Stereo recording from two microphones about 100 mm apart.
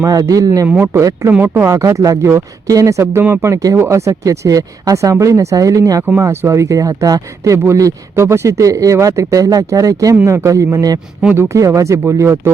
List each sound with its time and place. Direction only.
0.0 s speech: 35° right (ahead or behind)
1.3 s speech: 20° right (ahead or behind)